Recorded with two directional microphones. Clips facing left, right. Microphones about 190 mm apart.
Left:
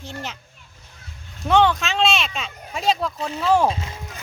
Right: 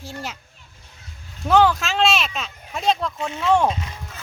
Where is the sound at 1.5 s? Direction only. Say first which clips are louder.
Right 1 dB; 5° right (ahead or behind).